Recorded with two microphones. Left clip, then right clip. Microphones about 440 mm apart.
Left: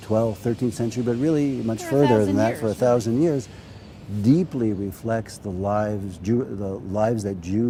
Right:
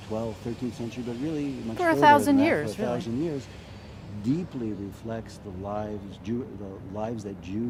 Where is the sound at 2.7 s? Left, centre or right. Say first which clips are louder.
Left 10 dB; left.